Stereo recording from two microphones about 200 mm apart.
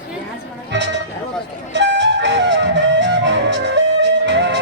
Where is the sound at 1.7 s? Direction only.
65° right (ahead or behind).